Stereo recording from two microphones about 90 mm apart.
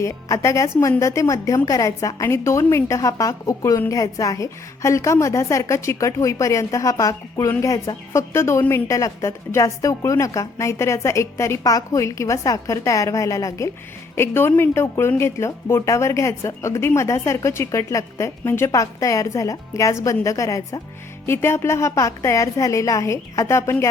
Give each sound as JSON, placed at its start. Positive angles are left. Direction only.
{"t": 0.0, "sound": "a woman's voice", "side_deg": 35}
{"t": 14.2, "sound": "a woman's voice", "side_deg": 25}